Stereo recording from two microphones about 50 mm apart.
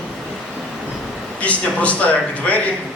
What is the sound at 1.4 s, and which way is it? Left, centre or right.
Speech, left.